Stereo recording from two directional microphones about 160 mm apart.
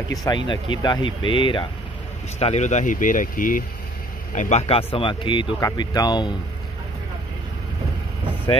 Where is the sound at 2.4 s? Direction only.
45° left (ahead or behind).